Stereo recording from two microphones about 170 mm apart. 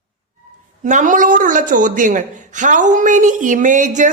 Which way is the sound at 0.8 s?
50° right (ahead or behind).